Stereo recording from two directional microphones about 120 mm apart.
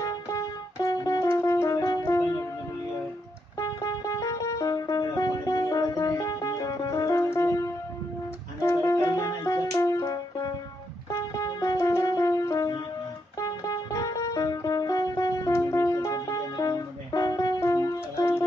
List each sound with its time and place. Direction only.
0.0 s music: 30° left (ahead or behind)
3.5 s music: 30° left (ahead or behind)